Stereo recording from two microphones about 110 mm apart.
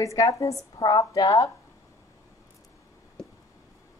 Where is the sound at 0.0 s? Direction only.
30° left (ahead or behind).